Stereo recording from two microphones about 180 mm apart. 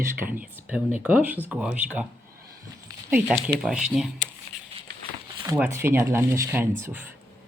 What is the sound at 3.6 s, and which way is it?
Speech, 5° right (ahead or behind).